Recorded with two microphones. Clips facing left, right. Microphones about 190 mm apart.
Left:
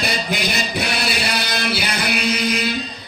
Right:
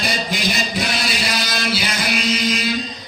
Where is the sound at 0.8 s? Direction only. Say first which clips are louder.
Left 1 dB; 60° left (ahead or behind).